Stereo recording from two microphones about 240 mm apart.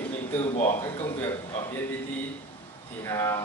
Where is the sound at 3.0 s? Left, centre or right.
Centre.